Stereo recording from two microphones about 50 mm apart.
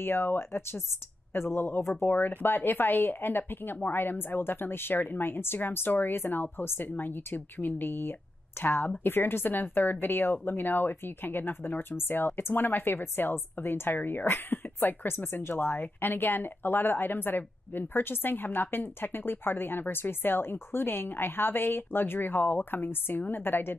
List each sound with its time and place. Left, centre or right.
0.0 s speech: left
2.0 s speech: left